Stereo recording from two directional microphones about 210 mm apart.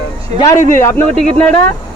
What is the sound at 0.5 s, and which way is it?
Speech, 40° left (ahead or behind).